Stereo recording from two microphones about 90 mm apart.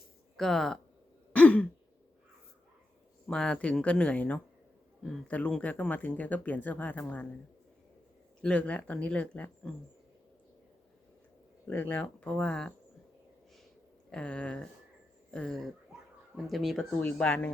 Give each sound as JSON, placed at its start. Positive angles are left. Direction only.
{"t": 0.3, "sound": "speech", "side_deg": 5}
{"t": 1.3, "sound": "throat clearing", "side_deg": 15}
{"t": 3.2, "sound": "speech", "side_deg": 10}
{"t": 8.4, "sound": "speech", "side_deg": 10}
{"t": 11.7, "sound": "speech", "side_deg": 20}
{"t": 14.1, "sound": "speech", "side_deg": 10}
{"t": 17.0, "sound": "speech", "side_deg": 15}